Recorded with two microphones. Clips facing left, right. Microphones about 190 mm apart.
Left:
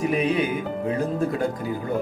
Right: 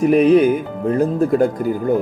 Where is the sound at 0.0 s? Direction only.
50° right (ahead or behind).